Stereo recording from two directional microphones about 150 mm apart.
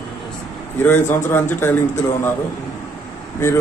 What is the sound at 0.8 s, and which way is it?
Speech, 15° left (ahead or behind).